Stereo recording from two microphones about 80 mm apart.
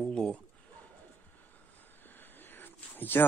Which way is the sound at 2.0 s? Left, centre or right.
Left.